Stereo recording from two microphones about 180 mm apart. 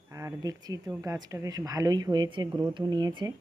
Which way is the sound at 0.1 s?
15° right (ahead or behind).